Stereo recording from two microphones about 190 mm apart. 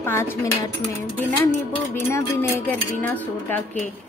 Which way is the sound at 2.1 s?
15° left (ahead or behind).